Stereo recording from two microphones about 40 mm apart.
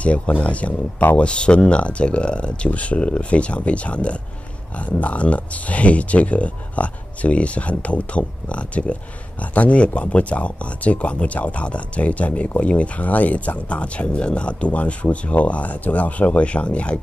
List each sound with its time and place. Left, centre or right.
0.4 s speech: left
13.7 s speech: left